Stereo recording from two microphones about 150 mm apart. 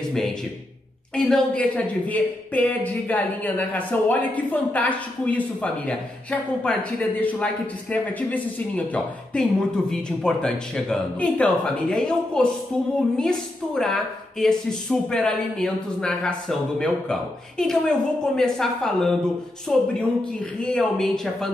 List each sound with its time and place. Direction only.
1.1 s a woman's voice: 5° left (ahead or behind)